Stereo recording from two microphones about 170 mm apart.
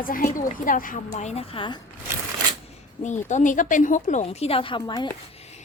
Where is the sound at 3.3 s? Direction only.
45° left (ahead or behind).